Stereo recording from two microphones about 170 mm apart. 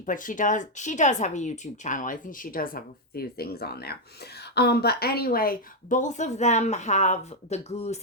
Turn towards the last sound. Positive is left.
turn(degrees=40)  # may be behind; listen again after turning